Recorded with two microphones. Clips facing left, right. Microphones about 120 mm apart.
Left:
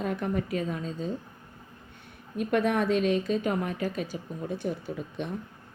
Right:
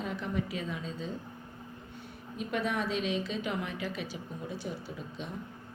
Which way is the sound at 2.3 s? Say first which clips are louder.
Left 7 dB; 55° left (ahead or behind).